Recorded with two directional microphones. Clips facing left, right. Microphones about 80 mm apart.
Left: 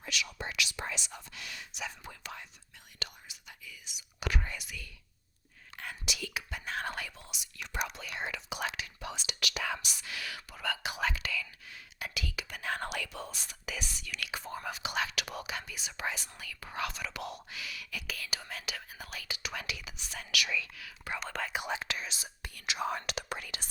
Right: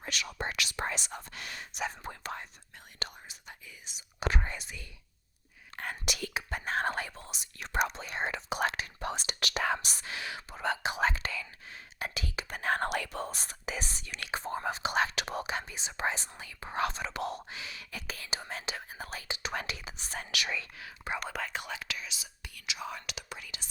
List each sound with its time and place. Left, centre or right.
0.0 s whispering: right
5.7 s whispering: right
21.2 s whispering: centre
21.5 s whispering: centre
21.8 s whispering: left